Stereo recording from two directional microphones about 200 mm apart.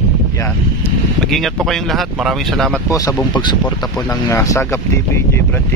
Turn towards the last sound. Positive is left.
turn(degrees=15)  # may be behind; listen again after turning